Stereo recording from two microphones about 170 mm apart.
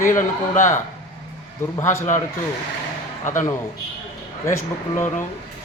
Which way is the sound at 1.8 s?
15° left (ahead or behind).